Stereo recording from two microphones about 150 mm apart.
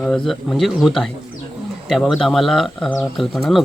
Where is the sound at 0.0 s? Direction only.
Centre (ahead or behind).